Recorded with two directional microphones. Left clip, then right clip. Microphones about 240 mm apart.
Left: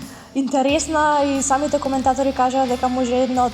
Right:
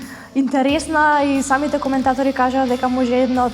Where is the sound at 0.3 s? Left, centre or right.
Left.